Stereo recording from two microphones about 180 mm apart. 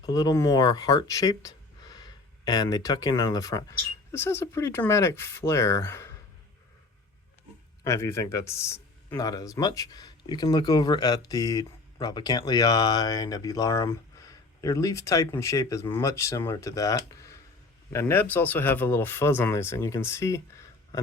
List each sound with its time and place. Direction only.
0.0 s speech: 20° left (ahead or behind)
7.9 s speech: 15° left (ahead or behind)